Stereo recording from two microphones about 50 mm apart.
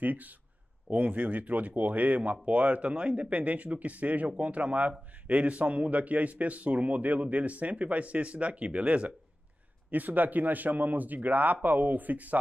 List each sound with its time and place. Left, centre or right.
0.0 s a man's voice: right